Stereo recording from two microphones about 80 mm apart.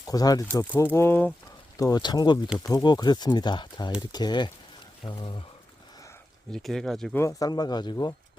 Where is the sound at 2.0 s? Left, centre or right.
Left.